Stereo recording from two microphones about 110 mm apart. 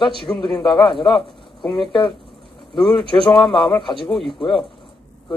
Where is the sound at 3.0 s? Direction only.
45° left (ahead or behind).